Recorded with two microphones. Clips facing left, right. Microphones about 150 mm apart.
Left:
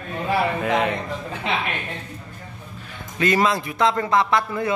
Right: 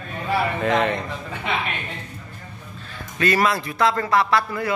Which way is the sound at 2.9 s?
20° left (ahead or behind).